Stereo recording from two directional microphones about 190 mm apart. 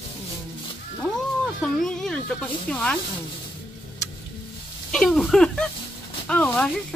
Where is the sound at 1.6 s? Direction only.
5° left (ahead or behind).